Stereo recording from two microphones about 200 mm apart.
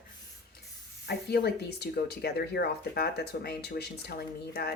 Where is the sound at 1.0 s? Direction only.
55° left (ahead or behind).